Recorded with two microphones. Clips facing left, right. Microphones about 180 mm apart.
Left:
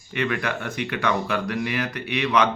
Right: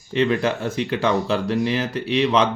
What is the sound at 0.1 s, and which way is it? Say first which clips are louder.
Speech: right 6 dB; 25° right (ahead or behind).